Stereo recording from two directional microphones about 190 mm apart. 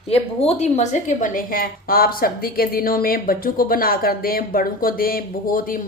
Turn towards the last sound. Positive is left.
turn(degrees=45)  # may be behind; listen again after turning